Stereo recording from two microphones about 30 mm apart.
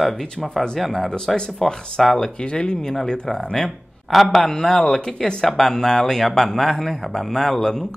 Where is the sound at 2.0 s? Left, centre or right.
Centre.